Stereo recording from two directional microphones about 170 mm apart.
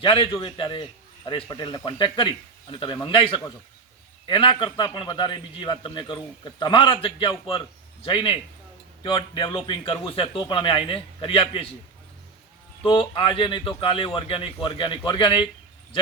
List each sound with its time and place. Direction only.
0.0 s a man's voice: 30° left (ahead or behind)
12.8 s a man's voice: 30° left (ahead or behind)